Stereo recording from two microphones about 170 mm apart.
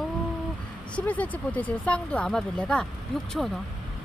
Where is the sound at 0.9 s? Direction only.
10° left (ahead or behind).